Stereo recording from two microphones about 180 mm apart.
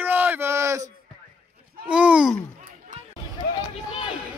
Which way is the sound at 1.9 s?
5° right (ahead or behind).